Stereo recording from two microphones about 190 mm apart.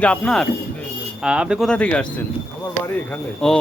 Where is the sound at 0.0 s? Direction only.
5° left (ahead or behind).